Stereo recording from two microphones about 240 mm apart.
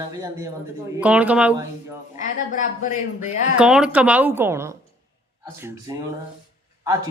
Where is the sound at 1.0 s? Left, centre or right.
Centre.